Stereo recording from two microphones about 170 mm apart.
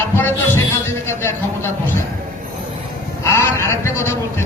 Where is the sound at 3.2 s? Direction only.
15° left (ahead or behind).